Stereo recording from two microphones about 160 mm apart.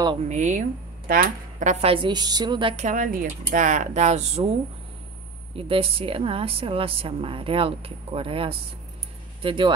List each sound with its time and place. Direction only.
0.3 s a woman's voice: 50° right (ahead or behind); by 2.7 s 25° right (ahead or behind)
2.7 s speech: 50° right (ahead or behind)
5.6 s a woman's voice: 35° right (ahead or behind)